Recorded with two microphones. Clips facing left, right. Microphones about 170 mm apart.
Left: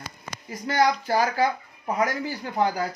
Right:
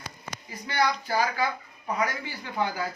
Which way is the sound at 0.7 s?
45° left (ahead or behind).